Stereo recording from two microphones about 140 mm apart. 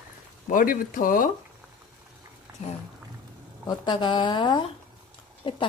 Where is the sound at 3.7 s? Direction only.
30° left (ahead or behind).